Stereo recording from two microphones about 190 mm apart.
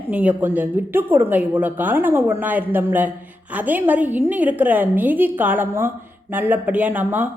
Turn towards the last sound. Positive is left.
turn(degrees=-10)  # may be behind; listen again after turning